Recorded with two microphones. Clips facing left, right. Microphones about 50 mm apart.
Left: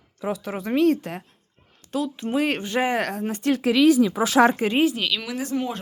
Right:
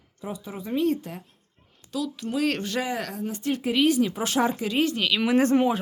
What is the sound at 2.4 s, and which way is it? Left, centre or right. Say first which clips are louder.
Speech: left 2 dB; left.